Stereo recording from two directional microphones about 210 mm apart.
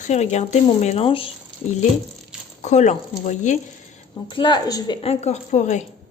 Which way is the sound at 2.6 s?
35° left (ahead or behind).